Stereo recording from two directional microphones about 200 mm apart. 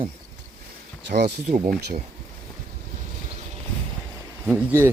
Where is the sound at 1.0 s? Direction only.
55° right (ahead or behind).